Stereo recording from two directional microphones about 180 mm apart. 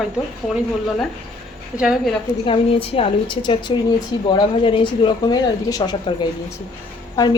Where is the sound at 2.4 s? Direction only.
30° left (ahead or behind).